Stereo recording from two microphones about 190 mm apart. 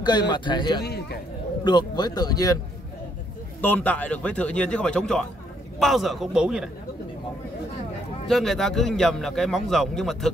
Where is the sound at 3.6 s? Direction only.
10° left (ahead or behind).